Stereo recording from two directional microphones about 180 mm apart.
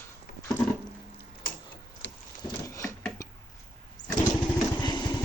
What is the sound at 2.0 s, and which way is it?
Wood, 80° left.